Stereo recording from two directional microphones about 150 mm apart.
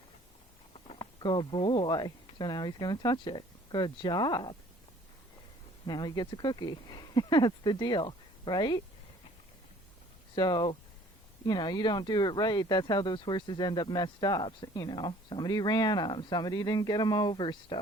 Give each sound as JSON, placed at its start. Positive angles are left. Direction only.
{"t": 0.9, "sound": "speech", "side_deg": 30}
{"t": 5.8, "sound": "speech", "side_deg": 30}
{"t": 10.3, "sound": "speech", "side_deg": 30}